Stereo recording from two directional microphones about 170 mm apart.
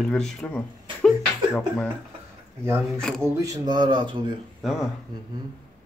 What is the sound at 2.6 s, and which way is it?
Speech, 15° right (ahead or behind).